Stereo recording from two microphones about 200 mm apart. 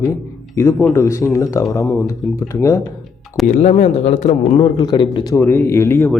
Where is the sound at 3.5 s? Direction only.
35° left (ahead or behind).